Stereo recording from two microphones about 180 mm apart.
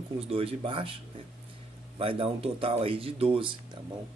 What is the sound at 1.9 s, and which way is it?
Speech, 30° right (ahead or behind).